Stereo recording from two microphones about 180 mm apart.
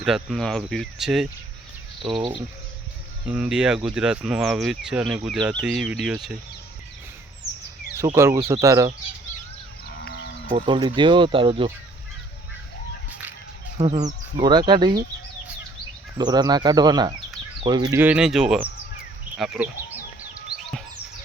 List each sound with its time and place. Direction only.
0.0 s speech: centre (ahead or behind)
3.2 s speech: 5° right (ahead or behind)
8.1 s speech: 15° right (ahead or behind)
10.0 s sheep: 70° left (ahead or behind)
10.7 s speech: 25° right (ahead or behind)
13.7 s speech: 30° right (ahead or behind)
16.1 s speech: 20° right (ahead or behind)
18.0 s speech: 5° right (ahead or behind)